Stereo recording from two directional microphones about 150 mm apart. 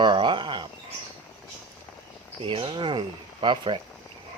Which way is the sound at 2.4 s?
35° right (ahead or behind).